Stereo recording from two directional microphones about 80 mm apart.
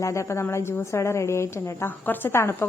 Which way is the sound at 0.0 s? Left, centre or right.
Left.